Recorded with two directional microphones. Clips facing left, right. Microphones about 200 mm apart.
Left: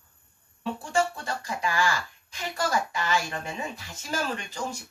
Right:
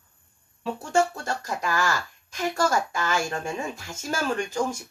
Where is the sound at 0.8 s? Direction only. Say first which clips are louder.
Right 4 dB; 45° right (ahead or behind).